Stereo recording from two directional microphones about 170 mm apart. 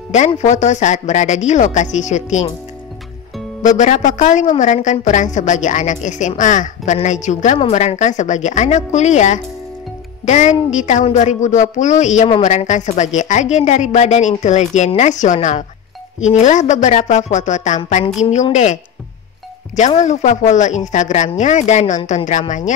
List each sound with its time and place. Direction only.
0.4 s a woman's voice: 45° left (ahead or behind)
3.6 s a woman's voice: 45° left (ahead or behind)
20.0 s a woman's voice: 45° left (ahead or behind)